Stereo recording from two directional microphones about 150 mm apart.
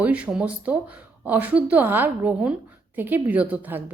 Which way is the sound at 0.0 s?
10° right (ahead or behind).